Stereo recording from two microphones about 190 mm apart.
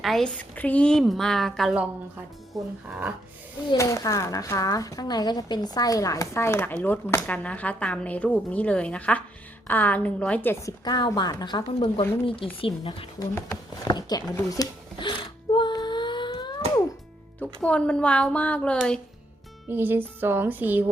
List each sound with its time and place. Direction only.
0.0 s a woman's voice: centre (ahead or behind)
3.7 s a woman's voice: 15° left (ahead or behind)
13.3 s a woman's voice: 15° left (ahead or behind)
15.5 s a sound: 25° left (ahead or behind)
17.4 s speech: 5° left (ahead or behind)
19.6 s speech: 10° right (ahead or behind)